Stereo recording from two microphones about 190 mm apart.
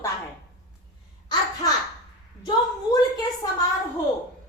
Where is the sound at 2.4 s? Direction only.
20° left (ahead or behind).